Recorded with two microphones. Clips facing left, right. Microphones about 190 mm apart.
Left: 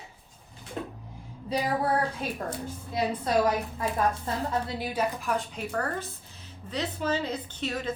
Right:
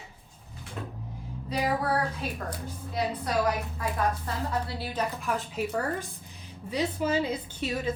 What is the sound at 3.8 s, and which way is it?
Speech, 25° left (ahead or behind).